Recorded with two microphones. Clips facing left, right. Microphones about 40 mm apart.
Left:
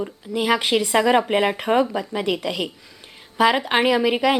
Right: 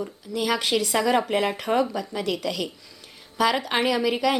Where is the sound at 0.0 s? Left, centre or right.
Left.